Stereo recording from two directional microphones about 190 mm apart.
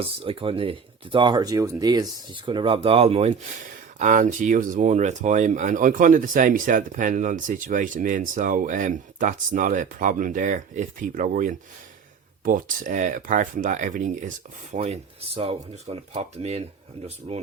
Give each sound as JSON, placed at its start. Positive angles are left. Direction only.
{"t": 0.0, "sound": "speech", "side_deg": -30}